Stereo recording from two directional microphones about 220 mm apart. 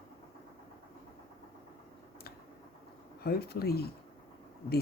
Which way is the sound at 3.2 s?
45° left (ahead or behind).